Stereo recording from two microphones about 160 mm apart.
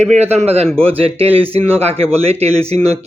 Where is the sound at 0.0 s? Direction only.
45° right (ahead or behind).